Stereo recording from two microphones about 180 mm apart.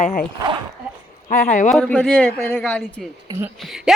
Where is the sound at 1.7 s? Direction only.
5° left (ahead or behind).